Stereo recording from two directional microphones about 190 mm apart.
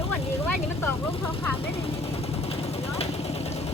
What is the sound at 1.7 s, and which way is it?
Vehicle, 30° left (ahead or behind).